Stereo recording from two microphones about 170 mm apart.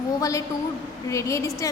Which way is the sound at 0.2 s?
20° left (ahead or behind).